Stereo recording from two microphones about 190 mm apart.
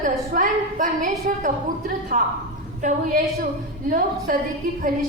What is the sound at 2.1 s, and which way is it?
A woman's voice, 40° right (ahead or behind).